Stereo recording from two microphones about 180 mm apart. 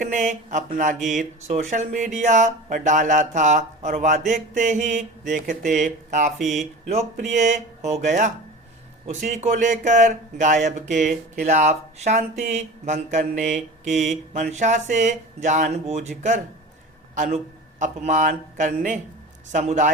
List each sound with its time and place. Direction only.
0.0 s speech: 45° right (ahead or behind)